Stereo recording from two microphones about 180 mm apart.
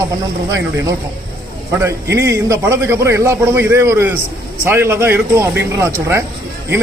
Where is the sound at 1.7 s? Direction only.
15° right (ahead or behind).